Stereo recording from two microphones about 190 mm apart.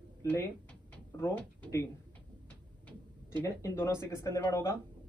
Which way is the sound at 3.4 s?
15° left (ahead or behind).